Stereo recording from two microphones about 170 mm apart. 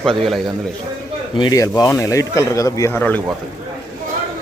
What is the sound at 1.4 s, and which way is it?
Speech, 20° left (ahead or behind).